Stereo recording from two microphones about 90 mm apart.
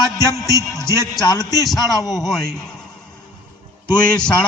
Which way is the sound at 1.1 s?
45° left (ahead or behind).